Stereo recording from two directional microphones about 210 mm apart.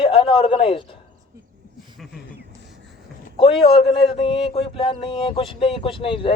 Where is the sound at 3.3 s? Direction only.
25° left (ahead or behind).